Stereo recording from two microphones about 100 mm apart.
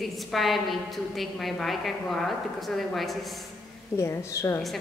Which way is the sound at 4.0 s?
30° left (ahead or behind).